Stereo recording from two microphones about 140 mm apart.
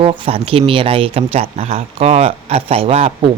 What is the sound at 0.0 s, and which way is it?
Speech, 40° right (ahead or behind).